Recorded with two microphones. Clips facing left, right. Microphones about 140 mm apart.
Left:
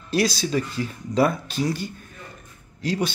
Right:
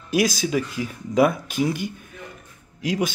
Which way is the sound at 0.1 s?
10° right (ahead or behind).